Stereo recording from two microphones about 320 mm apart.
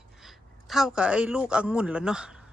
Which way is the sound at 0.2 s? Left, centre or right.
Centre.